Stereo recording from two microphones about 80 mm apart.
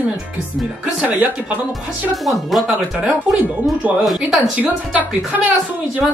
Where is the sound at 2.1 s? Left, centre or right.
Centre.